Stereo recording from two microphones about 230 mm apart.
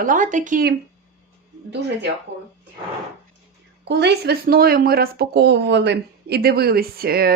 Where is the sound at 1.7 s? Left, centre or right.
Right.